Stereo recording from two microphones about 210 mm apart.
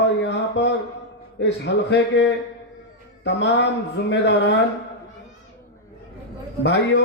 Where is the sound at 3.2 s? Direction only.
55° left (ahead or behind).